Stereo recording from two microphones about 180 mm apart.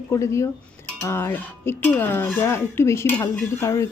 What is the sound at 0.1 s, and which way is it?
Speech, 15° left (ahead or behind).